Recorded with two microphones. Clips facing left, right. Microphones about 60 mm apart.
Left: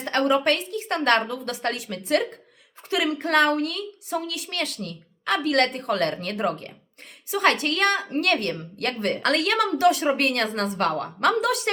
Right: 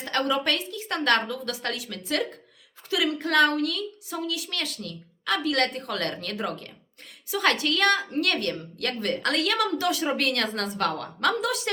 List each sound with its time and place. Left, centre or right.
0.0 s a woman's voice: left